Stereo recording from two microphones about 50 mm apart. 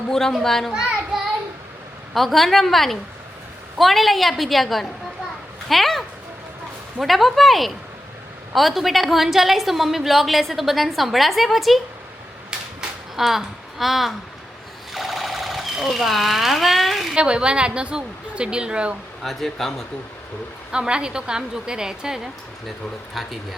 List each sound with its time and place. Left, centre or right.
0.1 s a child's voice: centre
0.7 s child singing: centre
2.1 s a woman's voice: centre
12.8 s a sound: centre
13.1 s speech: centre
17.2 s a woman's voice: centre
19.2 s a woman's voice: centre
20.7 s a woman's voice: centre